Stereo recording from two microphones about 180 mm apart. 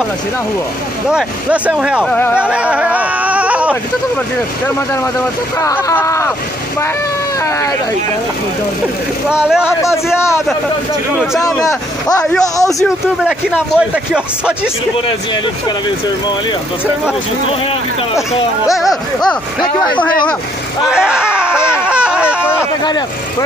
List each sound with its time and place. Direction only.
1.1 s speech: 5° right (ahead or behind)
2.0 s speech: 10° left (ahead or behind)
2.3 s a sound: 5° right (ahead or behind)
5.6 s speech: 20° left (ahead or behind)
9.3 s a man's voice: 5° right (ahead or behind)
11.6 s speech: 20° left (ahead or behind)
12.7 s a man's voice: 5° right (ahead or behind)
18.8 s a man's voice: centre (ahead or behind)
20.9 s screaming: 5° right (ahead or behind)
21.7 s a sound: 5° right (ahead or behind)